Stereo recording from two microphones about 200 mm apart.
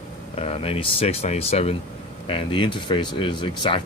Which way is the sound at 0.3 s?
30° left (ahead or behind).